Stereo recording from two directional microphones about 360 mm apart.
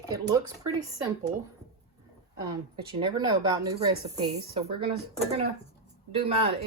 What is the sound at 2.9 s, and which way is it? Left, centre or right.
A woman's voice, centre.